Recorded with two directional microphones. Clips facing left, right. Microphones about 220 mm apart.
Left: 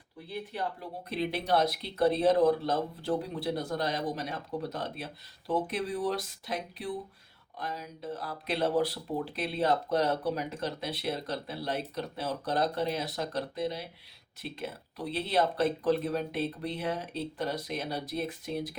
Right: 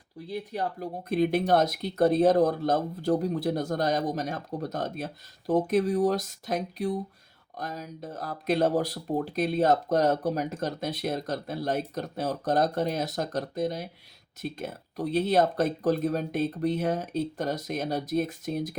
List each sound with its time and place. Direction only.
0.3 s speech: 45° right (ahead or behind)